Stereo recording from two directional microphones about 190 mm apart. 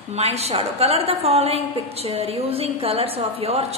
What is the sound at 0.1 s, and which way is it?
A woman's voice, 35° right (ahead or behind).